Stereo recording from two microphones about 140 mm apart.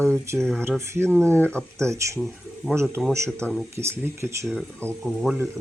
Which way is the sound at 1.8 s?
20° right (ahead or behind).